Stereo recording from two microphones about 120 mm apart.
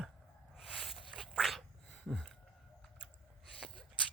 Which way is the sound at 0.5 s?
Centre (ahead or behind).